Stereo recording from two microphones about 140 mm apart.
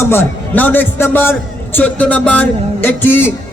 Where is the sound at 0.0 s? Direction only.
15° left (ahead or behind).